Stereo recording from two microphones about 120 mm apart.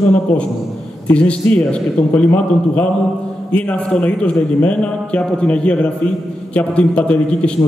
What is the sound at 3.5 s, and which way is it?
A man's voice, 10° left (ahead or behind).